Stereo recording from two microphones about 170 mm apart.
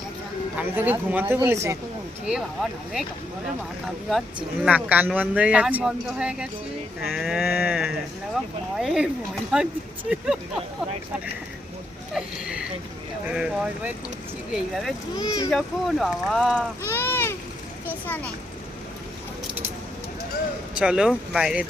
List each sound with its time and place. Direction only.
0.5 s a man's voice: 10° right (ahead or behind)
2.2 s speech: centre (ahead or behind)
4.6 s a man's voice: 10° right (ahead or behind)
12.1 s a sound: 5° right (ahead or behind)
13.3 s speech: 5° right (ahead or behind)
15.1 s speech: 25° left (ahead or behind)
15.4 s speech: centre (ahead or behind)
16.8 s a sound: 15° left (ahead or behind)
18.0 s a child's voice: 10° left (ahead or behind)
20.7 s speech: 5° right (ahead or behind)